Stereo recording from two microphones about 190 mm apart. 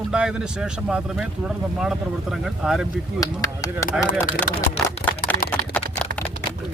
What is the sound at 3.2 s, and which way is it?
Speech, 20° left (ahead or behind).